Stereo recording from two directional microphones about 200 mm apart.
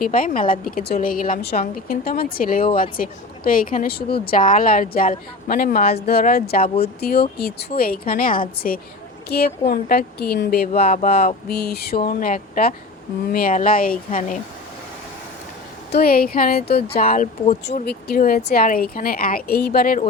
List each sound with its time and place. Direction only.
0.0 s a woman's voice: 45° left (ahead or behind)
15.9 s a woman's voice: 50° left (ahead or behind)